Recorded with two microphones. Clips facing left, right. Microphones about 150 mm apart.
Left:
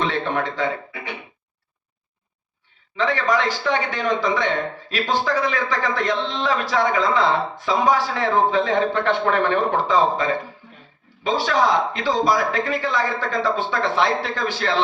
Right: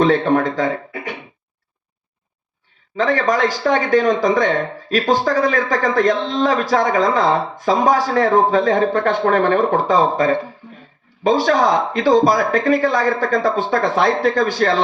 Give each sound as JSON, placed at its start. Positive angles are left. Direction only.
{"t": 0.0, "sound": "speech", "side_deg": -45}
{"t": 2.9, "sound": "speech", "side_deg": -45}